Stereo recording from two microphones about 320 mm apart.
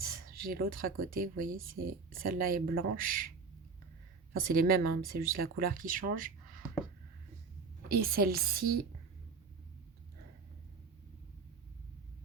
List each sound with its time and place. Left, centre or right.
0.0 s speech: right
4.5 s speech: right
7.9 s speech: right